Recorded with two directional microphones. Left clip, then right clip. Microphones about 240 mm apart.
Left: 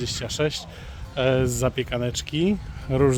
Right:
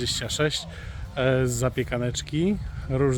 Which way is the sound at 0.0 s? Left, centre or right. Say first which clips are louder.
Even; centre.